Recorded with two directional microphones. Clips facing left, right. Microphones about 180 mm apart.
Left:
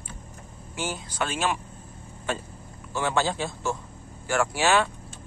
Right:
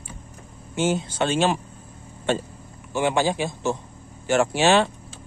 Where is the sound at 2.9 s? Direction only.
15° right (ahead or behind).